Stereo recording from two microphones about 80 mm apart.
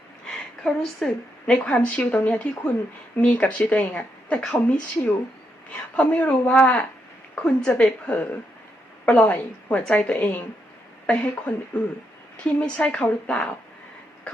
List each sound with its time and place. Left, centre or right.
0.3 s a woman's voice: centre
1.5 s a woman's voice: centre